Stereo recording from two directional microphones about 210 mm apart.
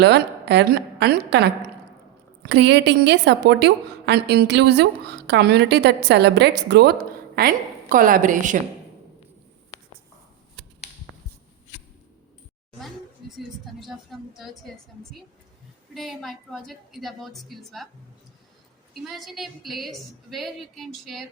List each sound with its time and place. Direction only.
0.0 s a woman's voice: 55° right (ahead or behind); by 8.5 s 40° right (ahead or behind)
13.3 s a woman's voice: centre (ahead or behind)
19.0 s a woman's voice: centre (ahead or behind)